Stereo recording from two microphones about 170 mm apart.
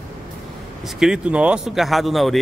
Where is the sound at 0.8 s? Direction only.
5° right (ahead or behind).